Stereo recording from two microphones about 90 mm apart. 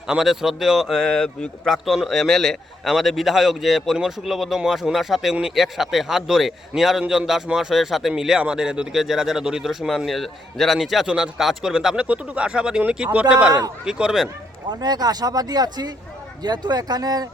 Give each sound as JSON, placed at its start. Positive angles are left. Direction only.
{"t": 0.1, "sound": "speech", "side_deg": -5}
{"t": 14.7, "sound": "speech", "side_deg": -50}